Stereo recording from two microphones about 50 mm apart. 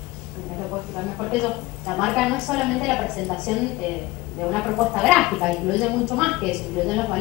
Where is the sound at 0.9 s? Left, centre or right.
Centre.